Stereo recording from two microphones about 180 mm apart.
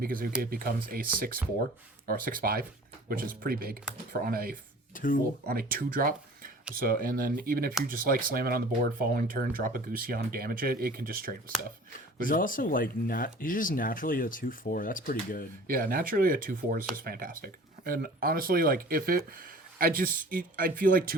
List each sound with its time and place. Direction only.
0.0 s speech: 55° right (ahead or behind)
4.9 s speech: 50° left (ahead or behind)
5.5 s speech: 55° right (ahead or behind)
12.2 s speech: 50° left (ahead or behind)
15.6 s speech: 50° right (ahead or behind)